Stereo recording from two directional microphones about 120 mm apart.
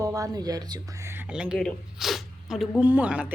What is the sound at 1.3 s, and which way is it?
Speech, 5° right (ahead or behind).